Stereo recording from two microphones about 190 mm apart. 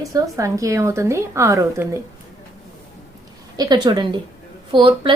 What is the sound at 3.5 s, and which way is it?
A woman's voice, 20° right (ahead or behind).